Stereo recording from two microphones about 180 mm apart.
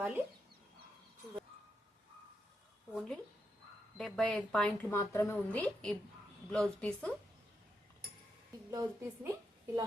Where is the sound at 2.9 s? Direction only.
5° left (ahead or behind).